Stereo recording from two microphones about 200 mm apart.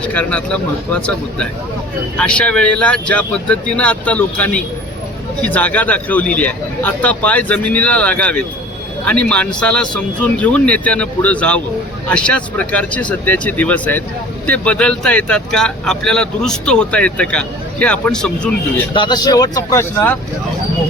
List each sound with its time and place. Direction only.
0.0 s speech: 5° left (ahead or behind)
18.9 s speech: 20° left (ahead or behind)